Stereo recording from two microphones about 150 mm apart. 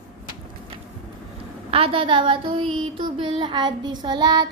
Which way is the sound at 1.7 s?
35° right (ahead or behind).